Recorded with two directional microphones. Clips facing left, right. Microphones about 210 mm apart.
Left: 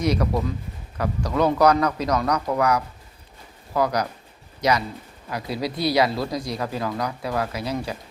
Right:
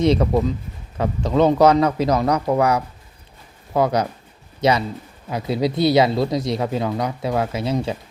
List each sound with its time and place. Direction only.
0.0 s speech: 25° right (ahead or behind)